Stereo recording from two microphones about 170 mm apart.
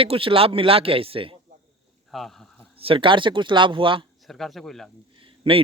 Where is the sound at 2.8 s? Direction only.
30° right (ahead or behind).